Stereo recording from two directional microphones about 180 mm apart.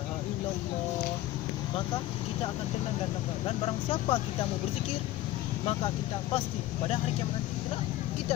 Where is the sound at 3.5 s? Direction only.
30° left (ahead or behind).